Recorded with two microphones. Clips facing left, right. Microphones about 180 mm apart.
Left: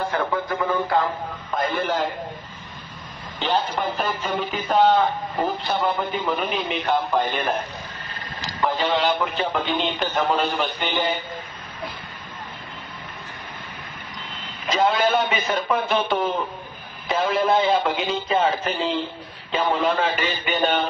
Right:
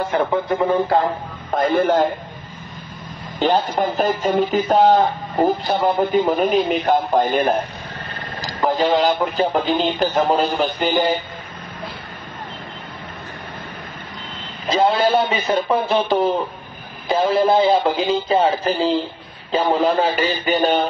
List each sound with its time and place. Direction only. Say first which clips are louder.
0.1 s speech: right 5 dB; 25° right (ahead or behind)
1.5 s speech: right 8 dB; 50° right (ahead or behind)
3.3 s speech: right 6 dB; 45° right (ahead or behind)
14.7 s speech: right 4 dB; 35° right (ahead or behind)